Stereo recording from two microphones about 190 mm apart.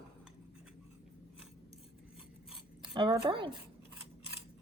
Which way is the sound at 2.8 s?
25° right (ahead or behind).